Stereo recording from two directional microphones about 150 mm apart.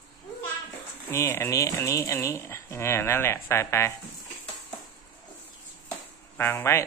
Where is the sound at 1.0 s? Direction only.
15° left (ahead or behind).